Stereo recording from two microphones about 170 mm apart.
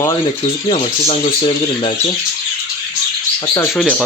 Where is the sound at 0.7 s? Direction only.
35° left (ahead or behind).